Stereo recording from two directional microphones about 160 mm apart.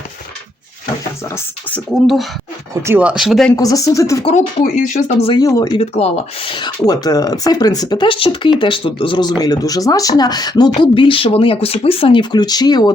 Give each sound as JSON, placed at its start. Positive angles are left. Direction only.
{"t": 1.9, "sound": "speech", "side_deg": 0}
{"t": 2.8, "sound": "speech", "side_deg": -10}
{"t": 3.5, "sound": "speech", "side_deg": 20}
{"t": 4.2, "sound": "speech", "side_deg": 35}
{"t": 4.6, "sound": "speech", "side_deg": 50}
{"t": 5.2, "sound": "speech", "side_deg": 25}
{"t": 5.8, "sound": "speech", "side_deg": 40}